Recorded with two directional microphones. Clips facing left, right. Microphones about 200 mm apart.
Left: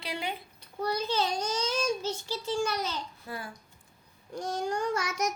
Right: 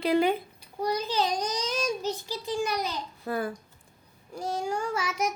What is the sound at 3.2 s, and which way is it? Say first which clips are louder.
Speech: right 14 dB; 55° right (ahead or behind).